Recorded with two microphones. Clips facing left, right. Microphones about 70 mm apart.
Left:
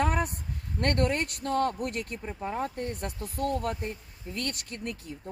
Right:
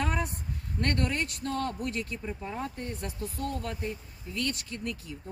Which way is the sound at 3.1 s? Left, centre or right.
Left.